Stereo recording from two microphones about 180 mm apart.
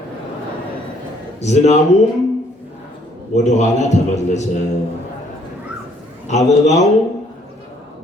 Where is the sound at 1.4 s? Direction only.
40° left (ahead or behind).